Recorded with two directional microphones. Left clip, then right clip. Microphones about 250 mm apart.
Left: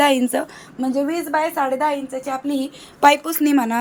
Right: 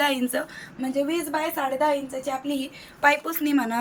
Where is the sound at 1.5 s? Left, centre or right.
Centre.